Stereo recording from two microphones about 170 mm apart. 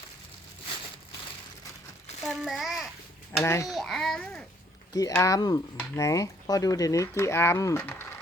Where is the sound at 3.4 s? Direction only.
15° left (ahead or behind).